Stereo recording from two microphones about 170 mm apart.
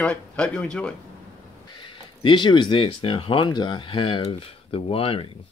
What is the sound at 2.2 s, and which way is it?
Speech, 25° left (ahead or behind).